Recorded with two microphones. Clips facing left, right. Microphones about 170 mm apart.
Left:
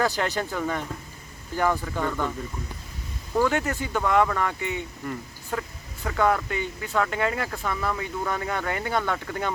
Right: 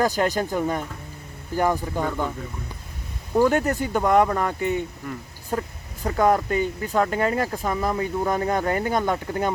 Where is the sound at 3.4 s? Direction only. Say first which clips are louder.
Right 5 dB; 40° right (ahead or behind).